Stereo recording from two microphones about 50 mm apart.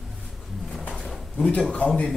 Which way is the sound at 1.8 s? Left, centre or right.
Left.